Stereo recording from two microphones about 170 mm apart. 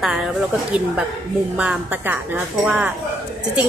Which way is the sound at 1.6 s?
10° right (ahead or behind).